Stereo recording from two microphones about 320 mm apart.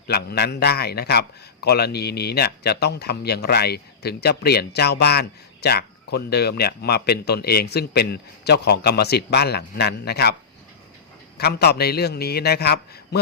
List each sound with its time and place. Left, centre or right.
0.1 s speech: left
11.3 s speech: left